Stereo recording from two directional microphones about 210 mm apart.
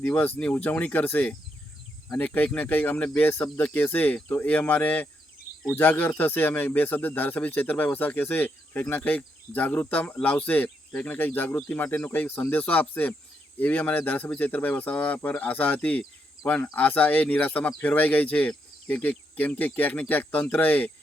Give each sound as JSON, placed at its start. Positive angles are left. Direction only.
{"t": 0.0, "sound": "speech", "side_deg": 10}